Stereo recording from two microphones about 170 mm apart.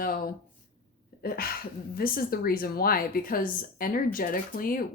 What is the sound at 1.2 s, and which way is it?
Speech, 60° left (ahead or behind).